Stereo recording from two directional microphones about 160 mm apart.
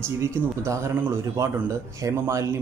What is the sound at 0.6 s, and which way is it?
A man's voice, 20° right (ahead or behind).